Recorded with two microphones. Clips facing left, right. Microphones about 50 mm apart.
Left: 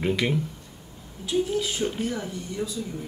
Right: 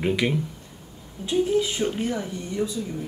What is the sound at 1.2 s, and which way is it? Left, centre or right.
A woman's voice, right.